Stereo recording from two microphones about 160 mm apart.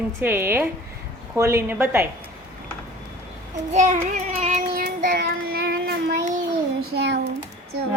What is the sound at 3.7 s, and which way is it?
Child singing, 50° right (ahead or behind).